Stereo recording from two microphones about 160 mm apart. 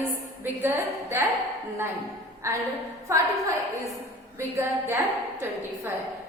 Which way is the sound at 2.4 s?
15° right (ahead or behind).